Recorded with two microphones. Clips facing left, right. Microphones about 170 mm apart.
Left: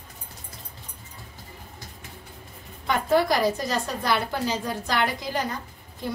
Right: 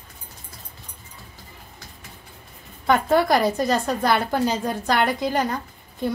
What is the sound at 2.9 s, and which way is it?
A woman's voice, 55° right (ahead or behind).